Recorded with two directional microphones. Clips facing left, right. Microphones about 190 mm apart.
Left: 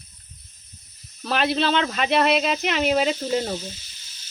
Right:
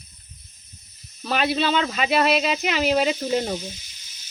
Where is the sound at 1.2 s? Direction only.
Centre (ahead or behind).